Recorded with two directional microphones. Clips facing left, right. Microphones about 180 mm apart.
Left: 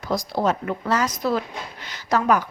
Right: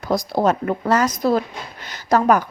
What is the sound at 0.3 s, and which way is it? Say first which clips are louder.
A woman's voice: right 4 dB; 45° right (ahead or behind).